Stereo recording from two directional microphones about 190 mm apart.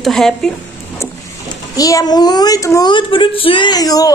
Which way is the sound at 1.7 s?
20° left (ahead or behind).